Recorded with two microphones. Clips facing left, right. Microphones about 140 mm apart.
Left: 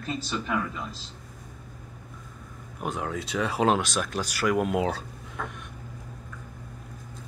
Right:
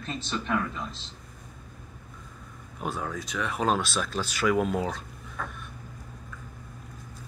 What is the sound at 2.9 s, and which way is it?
Speech, 20° left (ahead or behind).